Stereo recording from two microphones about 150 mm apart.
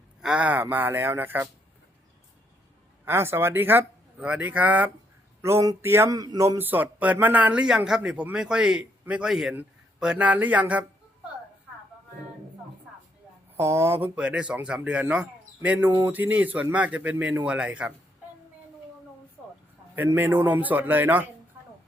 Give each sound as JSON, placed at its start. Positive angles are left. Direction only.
{"t": 0.2, "sound": "a man's voice", "side_deg": -5}
{"t": 3.0, "sound": "a man's voice", "side_deg": -15}
{"t": 5.4, "sound": "a sound", "side_deg": -20}
{"t": 6.6, "sound": "a man's voice", "side_deg": -10}
{"t": 13.6, "sound": "a man's voice", "side_deg": -15}
{"t": 19.4, "sound": "a sound", "side_deg": -10}
{"t": 20.0, "sound": "a man's voice", "side_deg": -15}